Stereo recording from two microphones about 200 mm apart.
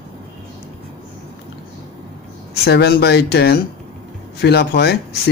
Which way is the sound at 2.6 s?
55° left (ahead or behind).